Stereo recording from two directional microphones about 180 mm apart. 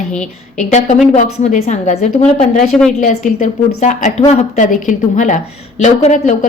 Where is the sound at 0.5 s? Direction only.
40° left (ahead or behind).